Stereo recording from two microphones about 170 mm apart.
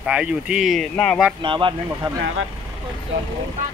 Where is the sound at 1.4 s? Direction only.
30° right (ahead or behind).